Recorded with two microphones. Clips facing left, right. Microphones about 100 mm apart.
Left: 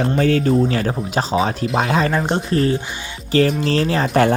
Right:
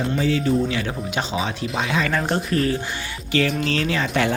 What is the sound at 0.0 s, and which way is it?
Speech, 55° left (ahead or behind).